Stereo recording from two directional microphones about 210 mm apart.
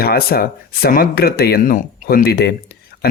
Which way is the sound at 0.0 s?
45° left (ahead or behind).